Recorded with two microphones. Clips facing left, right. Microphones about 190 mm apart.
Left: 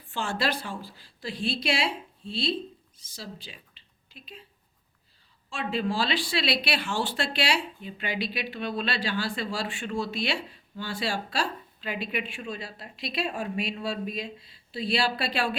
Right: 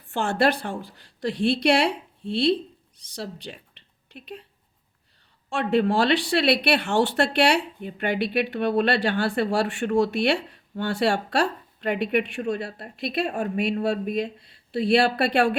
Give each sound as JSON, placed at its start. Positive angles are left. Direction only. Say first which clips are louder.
{"t": 0.1, "sound": "speech", "louder": "right 7 dB", "side_deg": -60}
{"t": 5.5, "sound": "speech", "louder": "right 8 dB", "side_deg": -65}